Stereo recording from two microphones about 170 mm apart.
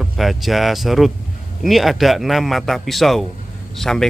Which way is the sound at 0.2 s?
Centre (ahead or behind).